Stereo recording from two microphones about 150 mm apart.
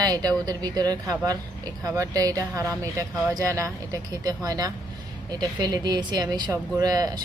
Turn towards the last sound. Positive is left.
turn(degrees=-25)  # may be behind; listen again after turning